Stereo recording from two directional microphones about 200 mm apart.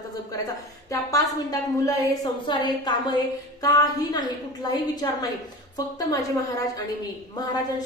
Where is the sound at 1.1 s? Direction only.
15° left (ahead or behind).